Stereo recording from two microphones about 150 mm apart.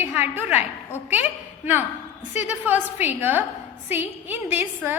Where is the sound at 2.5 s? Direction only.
10° right (ahead or behind).